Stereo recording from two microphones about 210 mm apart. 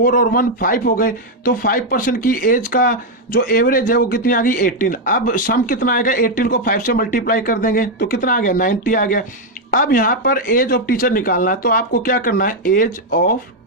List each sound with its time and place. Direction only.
0.0 s speech: 40° left (ahead or behind)